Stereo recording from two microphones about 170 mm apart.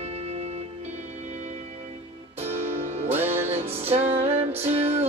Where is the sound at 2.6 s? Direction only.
45° right (ahead or behind).